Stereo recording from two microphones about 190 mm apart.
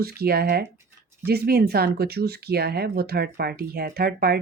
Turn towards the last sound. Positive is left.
turn(degrees=-55)  # may be behind; listen again after turning